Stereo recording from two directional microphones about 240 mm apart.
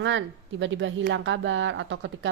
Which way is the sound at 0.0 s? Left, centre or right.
Right.